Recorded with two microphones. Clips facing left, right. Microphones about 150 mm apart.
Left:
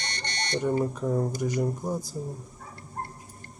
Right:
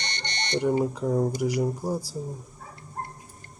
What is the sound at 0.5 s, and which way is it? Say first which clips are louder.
Speech: right 2 dB; 15° right (ahead or behind).